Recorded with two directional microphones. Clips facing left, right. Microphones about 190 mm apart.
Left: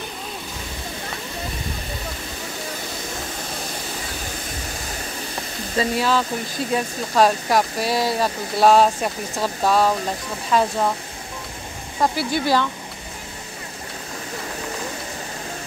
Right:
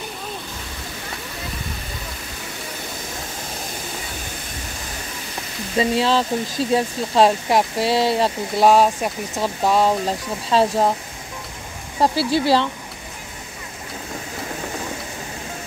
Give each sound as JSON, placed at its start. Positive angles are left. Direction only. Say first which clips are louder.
{"t": 5.8, "sound": "speech", "louder": "right 2 dB", "side_deg": -25}
{"t": 8.6, "sound": "speech", "louder": "even", "side_deg": -10}
{"t": 10.5, "sound": "speech", "louder": "right 2 dB", "side_deg": -30}
{"t": 12.0, "sound": "speech", "louder": "right 3 dB", "side_deg": -30}